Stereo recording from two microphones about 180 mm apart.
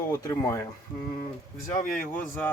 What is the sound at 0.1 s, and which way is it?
Speech, 20° left (ahead or behind).